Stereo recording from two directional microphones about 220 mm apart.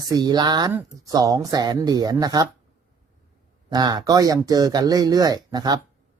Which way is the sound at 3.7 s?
15° right (ahead or behind).